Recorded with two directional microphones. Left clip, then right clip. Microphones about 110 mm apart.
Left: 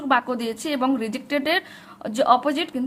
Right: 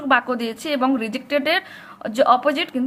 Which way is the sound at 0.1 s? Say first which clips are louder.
Right 3 dB; 35° left (ahead or behind).